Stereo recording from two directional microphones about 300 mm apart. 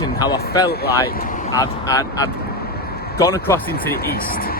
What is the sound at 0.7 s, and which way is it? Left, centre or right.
Speech, left.